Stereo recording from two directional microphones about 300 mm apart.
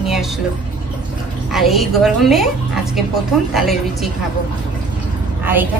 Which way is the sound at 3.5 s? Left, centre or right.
Centre.